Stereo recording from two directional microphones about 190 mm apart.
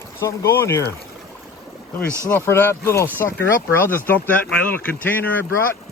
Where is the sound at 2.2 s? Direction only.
15° left (ahead or behind).